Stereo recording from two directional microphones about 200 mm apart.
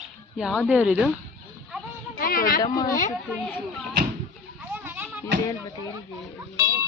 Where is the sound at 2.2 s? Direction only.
45° left (ahead or behind).